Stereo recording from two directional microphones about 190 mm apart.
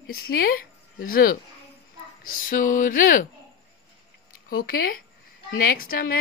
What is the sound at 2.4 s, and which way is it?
Speech, 45° left (ahead or behind).